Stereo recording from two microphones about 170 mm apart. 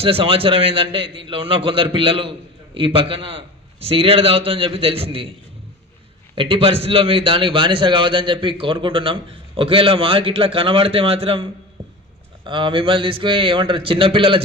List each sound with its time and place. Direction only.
0.0 s a man's voice: 35° right (ahead or behind)
6.3 s a man's voice: 30° right (ahead or behind)
12.4 s a man's voice: 30° right (ahead or behind)